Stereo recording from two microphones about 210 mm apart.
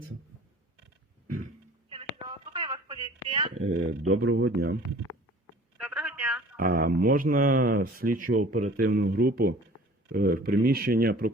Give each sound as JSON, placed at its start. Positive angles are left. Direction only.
{"t": 1.9, "sound": "telephone", "side_deg": -25}
{"t": 3.2, "sound": "a sound", "side_deg": -25}
{"t": 3.7, "sound": "speech", "side_deg": -85}
{"t": 4.4, "sound": "speech", "side_deg": -50}
{"t": 5.7, "sound": "telephone", "side_deg": 0}
{"t": 6.6, "sound": "speech", "side_deg": -45}
{"t": 8.4, "sound": "speech", "side_deg": -90}
{"t": 8.7, "sound": "speech", "side_deg": -50}